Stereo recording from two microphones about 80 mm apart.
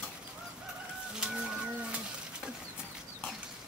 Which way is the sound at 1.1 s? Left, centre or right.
Centre.